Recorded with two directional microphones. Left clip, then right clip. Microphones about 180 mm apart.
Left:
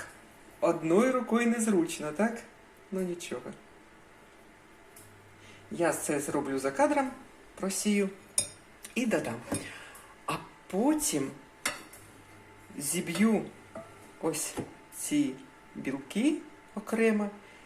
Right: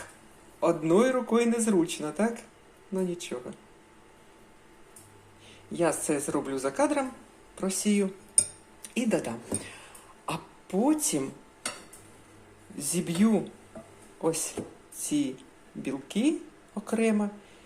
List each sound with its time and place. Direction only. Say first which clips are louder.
0.6 s a man's voice: right 2 dB; 10° right (ahead or behind)
5.7 s a man's voice: right 2 dB; 10° right (ahead or behind)
12.7 s a man's voice: right 2 dB; 10° right (ahead or behind)